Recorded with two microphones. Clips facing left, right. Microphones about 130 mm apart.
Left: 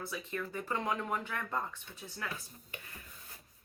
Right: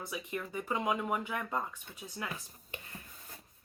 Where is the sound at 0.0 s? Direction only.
15° right (ahead or behind).